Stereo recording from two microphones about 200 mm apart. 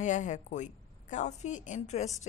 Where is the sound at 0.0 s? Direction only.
40° left (ahead or behind).